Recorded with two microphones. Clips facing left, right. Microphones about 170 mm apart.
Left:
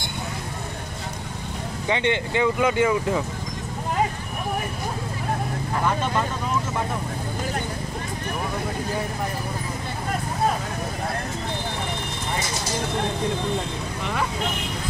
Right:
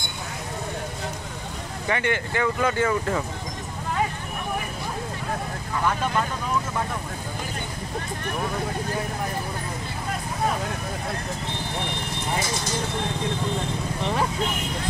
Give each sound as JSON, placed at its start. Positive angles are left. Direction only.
{"t": 1.9, "sound": "speech", "side_deg": 20}